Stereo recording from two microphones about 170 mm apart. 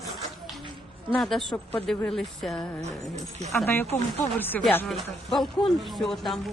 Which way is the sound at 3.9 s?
15° left (ahead or behind).